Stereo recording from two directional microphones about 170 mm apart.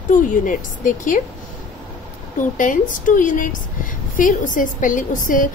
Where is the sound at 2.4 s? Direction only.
50° left (ahead or behind).